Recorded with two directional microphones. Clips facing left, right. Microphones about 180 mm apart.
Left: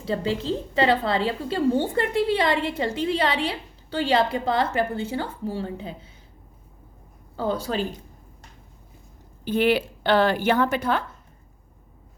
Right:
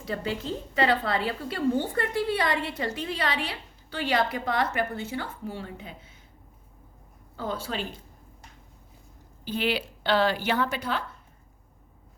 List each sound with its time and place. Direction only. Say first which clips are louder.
0.0 s a woman's voice: left 5 dB; 30° left (ahead or behind)
7.3 s a woman's voice: left 6 dB; 35° left (ahead or behind)
9.4 s a woman's voice: left 7 dB; 55° left (ahead or behind)